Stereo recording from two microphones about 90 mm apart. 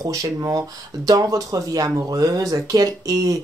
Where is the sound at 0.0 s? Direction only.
40° right (ahead or behind).